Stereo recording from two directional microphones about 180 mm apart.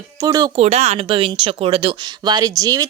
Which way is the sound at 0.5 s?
35° right (ahead or behind).